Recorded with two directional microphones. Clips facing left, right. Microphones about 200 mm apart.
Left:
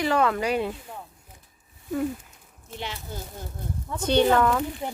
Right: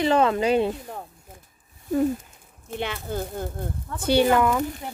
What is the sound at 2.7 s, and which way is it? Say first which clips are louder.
Speech: right 7 dB; 55° right (ahead or behind).